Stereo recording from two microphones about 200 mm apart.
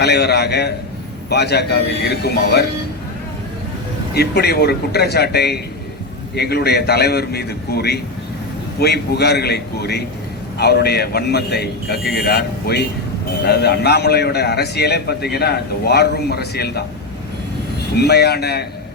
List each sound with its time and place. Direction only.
0.0 s speech: 55° left (ahead or behind)
4.1 s a man's voice: 55° left (ahead or behind)
17.9 s a man's voice: 55° left (ahead or behind)